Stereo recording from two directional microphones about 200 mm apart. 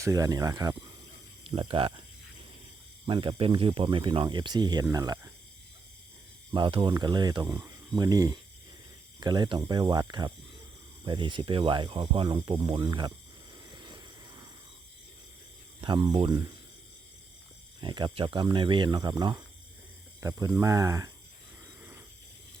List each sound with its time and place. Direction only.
0.0 s speech: 15° right (ahead or behind)
3.1 s speech: 25° right (ahead or behind)
6.5 s speech: 25° right (ahead or behind)
13.7 s a sound: 20° right (ahead or behind)
15.8 s speech: 20° right (ahead or behind)
17.7 s speech: 20° right (ahead or behind)